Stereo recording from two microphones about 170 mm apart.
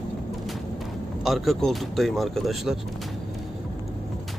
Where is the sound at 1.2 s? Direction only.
Centre (ahead or behind).